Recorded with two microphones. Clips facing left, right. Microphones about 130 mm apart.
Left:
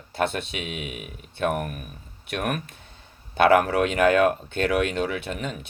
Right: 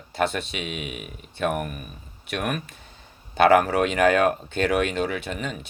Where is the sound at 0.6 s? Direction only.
60° right (ahead or behind).